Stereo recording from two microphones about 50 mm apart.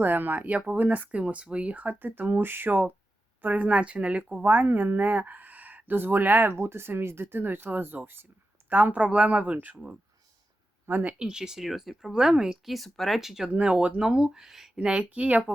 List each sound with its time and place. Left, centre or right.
0.0 s speech: right
6.6 s speech: right
8.7 s speech: right
10.8 s speech: right
11.2 s speech: centre
12.7 s speech: centre
13.5 s speech: right; by 14.7 s centre
14.8 s speech: right